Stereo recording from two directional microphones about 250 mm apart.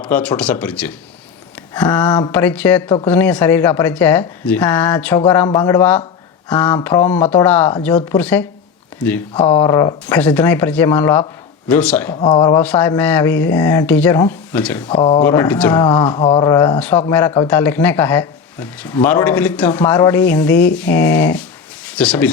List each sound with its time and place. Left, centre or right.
0.0 s a man's voice: centre
9.4 s a man's voice: centre
12.1 s a man's voice: centre
14.8 s speech: left
15.2 s a man's voice: centre
16.1 s a man's voice: centre